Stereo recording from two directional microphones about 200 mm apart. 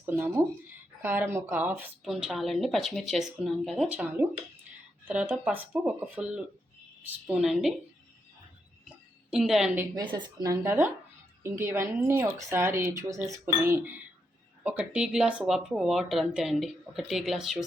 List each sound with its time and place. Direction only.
0.0 s a woman's voice: 10° right (ahead or behind)
9.3 s speech: centre (ahead or behind)
9.9 s a woman's voice: 25° right (ahead or behind); by 17.6 s centre (ahead or behind)